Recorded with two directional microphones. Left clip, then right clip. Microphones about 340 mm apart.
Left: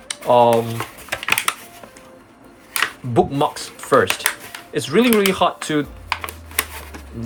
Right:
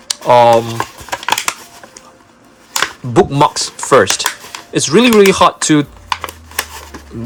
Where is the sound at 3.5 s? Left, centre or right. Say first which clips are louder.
Right 6 dB; centre.